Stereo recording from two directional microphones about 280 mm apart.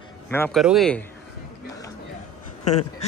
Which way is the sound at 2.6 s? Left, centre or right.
Left.